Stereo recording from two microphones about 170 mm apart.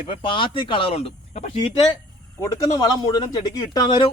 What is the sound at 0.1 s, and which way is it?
Speech, 30° left (ahead or behind).